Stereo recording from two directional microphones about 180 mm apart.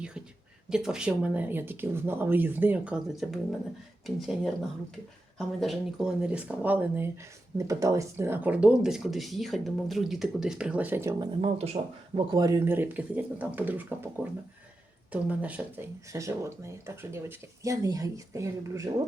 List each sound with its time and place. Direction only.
0.7 s speech: 5° right (ahead or behind)
5.5 s speech: centre (ahead or behind); by 11.3 s 15° right (ahead or behind)
11.3 s speech: 35° right (ahead or behind); by 19.0 s 20° right (ahead or behind)